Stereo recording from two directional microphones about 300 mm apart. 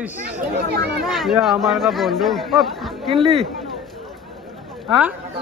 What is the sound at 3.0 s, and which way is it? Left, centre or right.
Speech, centre.